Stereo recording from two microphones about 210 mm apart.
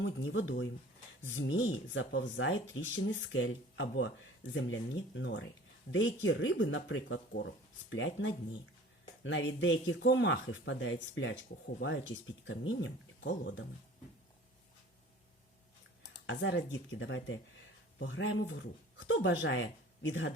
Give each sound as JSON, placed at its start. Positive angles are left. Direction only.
{"t": 0.0, "sound": "speech", "side_deg": 60}
{"t": 16.1, "sound": "speech", "side_deg": 60}